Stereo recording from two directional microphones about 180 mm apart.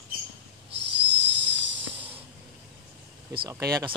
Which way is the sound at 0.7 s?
75° right (ahead or behind).